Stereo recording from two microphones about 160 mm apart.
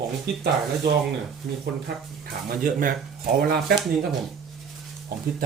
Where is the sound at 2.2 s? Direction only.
60° right (ahead or behind).